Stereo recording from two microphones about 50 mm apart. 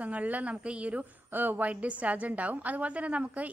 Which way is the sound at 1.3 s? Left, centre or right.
Right.